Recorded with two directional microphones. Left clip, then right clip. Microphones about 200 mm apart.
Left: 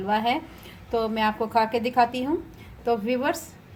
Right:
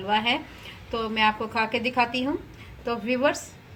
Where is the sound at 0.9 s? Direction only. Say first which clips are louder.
Right 1 dB; 35° left (ahead or behind).